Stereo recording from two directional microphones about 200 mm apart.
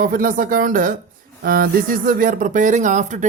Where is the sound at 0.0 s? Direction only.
45° right (ahead or behind).